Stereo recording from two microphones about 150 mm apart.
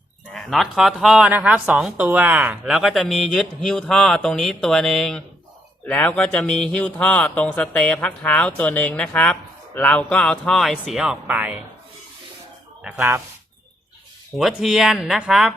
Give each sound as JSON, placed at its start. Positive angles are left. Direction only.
{"t": 0.3, "sound": "a woman's voice", "side_deg": 0}
{"t": 13.0, "sound": "speech", "side_deg": -15}
{"t": 14.3, "sound": "a woman's voice", "side_deg": 0}